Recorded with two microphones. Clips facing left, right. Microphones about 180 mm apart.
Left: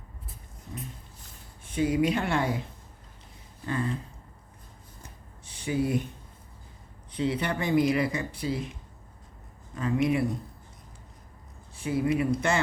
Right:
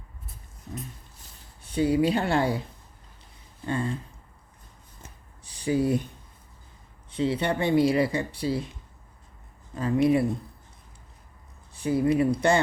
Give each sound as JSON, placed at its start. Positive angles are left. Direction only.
{"t": 1.6, "sound": "speech", "side_deg": -35}
{"t": 3.7, "sound": "speech", "side_deg": -30}
{"t": 5.0, "sound": "a sound", "side_deg": -35}
{"t": 7.1, "sound": "speech", "side_deg": -30}
{"t": 9.7, "sound": "speech", "side_deg": -35}
{"t": 11.8, "sound": "speech", "side_deg": -35}